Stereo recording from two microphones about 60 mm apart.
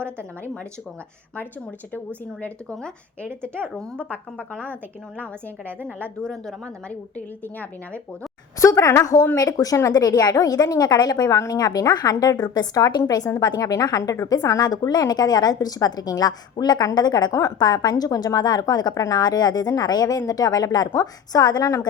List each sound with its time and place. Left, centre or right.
1.9 s a woman's voice: left
7.2 s speech: left
8.6 s a woman's voice: left
9.4 s a woman's voice: left
11.3 s a woman's voice: left
17.3 s a woman's voice: left